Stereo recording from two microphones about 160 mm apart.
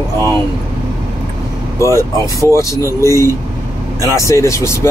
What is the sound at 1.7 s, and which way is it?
Speech, 20° left (ahead or behind).